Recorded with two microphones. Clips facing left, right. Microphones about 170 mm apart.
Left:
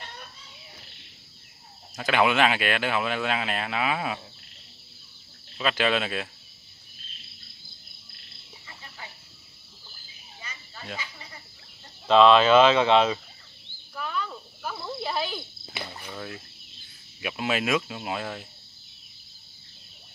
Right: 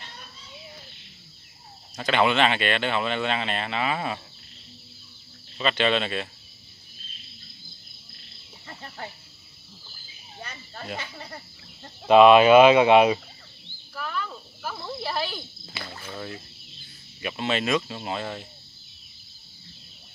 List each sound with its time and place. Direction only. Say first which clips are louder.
2.0 s speech: right 1 dB; 5° left (ahead or behind)
5.6 s speech: right 1 dB; 5° left (ahead or behind)
8.6 s a sound: right 7 dB; 55° right (ahead or behind)
10.4 s cricket: right 5 dB; 55° right (ahead or behind)
11.0 s a sound: right 4 dB; 60° right (ahead or behind)
12.1 s speech: right 3 dB; 10° right (ahead or behind)
13.9 s cricket: even; centre (ahead or behind)
15.7 s a sound: left 1 dB; 15° left (ahead or behind)
17.2 s speech: right 1 dB; 5° left (ahead or behind)